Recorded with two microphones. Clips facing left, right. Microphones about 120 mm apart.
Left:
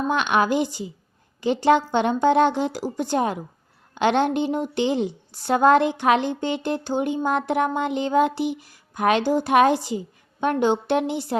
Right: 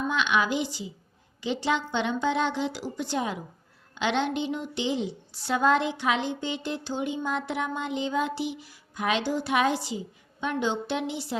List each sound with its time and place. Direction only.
0.1 s a woman's voice: 50° left (ahead or behind)